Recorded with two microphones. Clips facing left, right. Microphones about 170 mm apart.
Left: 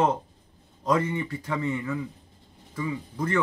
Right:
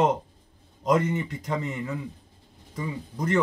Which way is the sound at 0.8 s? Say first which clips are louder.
Right 2 dB; 15° right (ahead or behind).